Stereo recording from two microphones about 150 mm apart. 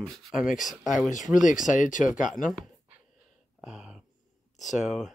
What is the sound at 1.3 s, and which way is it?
Speech, 55° left (ahead or behind).